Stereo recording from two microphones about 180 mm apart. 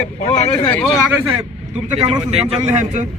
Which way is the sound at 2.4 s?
35° right (ahead or behind).